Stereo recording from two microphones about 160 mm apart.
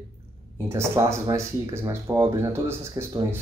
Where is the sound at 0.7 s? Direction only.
15° right (ahead or behind).